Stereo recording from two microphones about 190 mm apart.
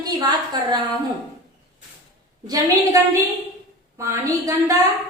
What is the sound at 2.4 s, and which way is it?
A woman's voice, 20° right (ahead or behind).